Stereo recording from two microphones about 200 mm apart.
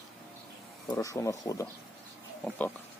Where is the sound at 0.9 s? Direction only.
15° left (ahead or behind).